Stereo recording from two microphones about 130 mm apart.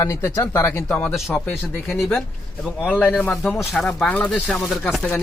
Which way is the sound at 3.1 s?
Centre (ahead or behind).